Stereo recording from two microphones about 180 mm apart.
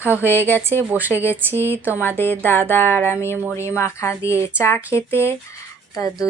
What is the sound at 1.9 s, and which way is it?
A woman's voice, 10° left (ahead or behind).